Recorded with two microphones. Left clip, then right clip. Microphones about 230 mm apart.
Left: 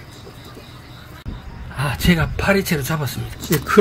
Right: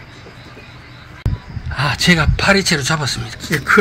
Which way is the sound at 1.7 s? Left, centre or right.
Centre.